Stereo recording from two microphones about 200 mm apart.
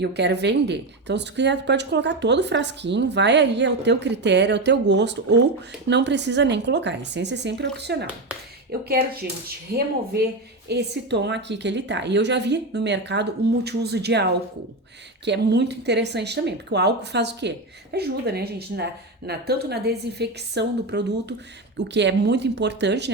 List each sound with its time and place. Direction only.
0.0 s a woman's voice: 60° right (ahead or behind)
10.7 s a woman's voice: 55° right (ahead or behind)